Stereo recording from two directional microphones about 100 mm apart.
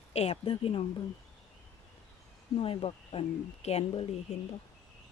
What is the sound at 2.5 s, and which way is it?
Speech, 65° left (ahead or behind).